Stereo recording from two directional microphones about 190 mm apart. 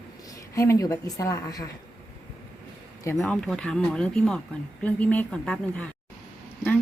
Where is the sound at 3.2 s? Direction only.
Centre (ahead or behind).